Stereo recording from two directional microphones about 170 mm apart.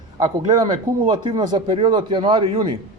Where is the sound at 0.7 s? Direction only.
25° right (ahead or behind).